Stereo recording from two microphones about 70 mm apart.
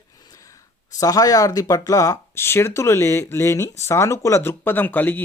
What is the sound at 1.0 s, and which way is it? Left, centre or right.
Speech, left.